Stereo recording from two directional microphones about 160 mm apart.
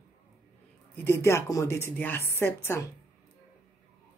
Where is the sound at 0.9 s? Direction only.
15° left (ahead or behind).